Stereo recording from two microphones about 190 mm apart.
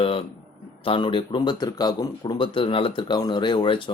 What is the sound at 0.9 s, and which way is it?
Speech, 25° left (ahead or behind).